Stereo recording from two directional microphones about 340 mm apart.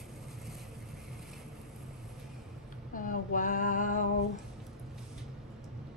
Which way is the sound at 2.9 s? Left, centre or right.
Left.